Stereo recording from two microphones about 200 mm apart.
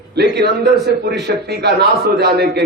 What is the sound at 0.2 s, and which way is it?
A man's voice, 55° right (ahead or behind).